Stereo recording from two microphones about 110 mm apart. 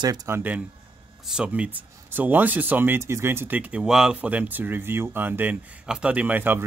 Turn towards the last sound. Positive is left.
turn(degrees=-15)  # may be behind; listen again after turning